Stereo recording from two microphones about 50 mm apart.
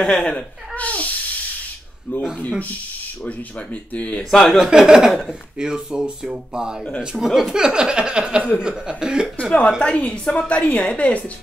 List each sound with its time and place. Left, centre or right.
0.0 s speech: left
3.9 s a woman's voice: left
4.2 s speech: centre
4.6 s a sound: centre
7.2 s speech: centre
7.5 s a sound: centre
9.4 s a woman's voice: left